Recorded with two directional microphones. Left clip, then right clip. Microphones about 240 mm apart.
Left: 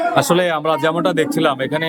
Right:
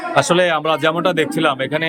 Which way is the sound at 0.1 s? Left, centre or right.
Centre.